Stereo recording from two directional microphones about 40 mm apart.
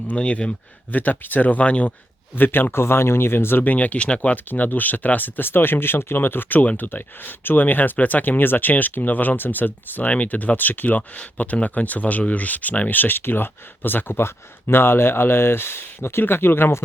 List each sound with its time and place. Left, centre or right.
0.1 s speech: left
0.9 s speech: left
2.3 s speech: left
2.7 s speech: left
3.6 s speech: left
4.4 s speech: left
5.5 s speech: left
10.1 s speech: left